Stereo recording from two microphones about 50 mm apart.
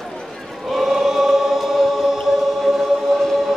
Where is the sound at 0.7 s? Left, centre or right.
Centre.